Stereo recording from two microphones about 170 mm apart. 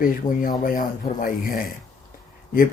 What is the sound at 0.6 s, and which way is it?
Mantra, 55° left (ahead or behind).